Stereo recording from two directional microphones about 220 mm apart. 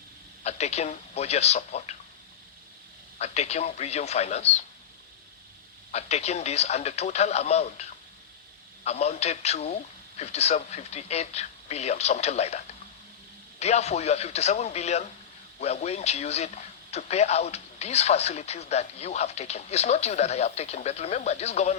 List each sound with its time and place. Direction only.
0.4 s speech: 30° left (ahead or behind)
3.2 s a man's voice: 30° left (ahead or behind)
5.9 s a man's voice: 30° left (ahead or behind)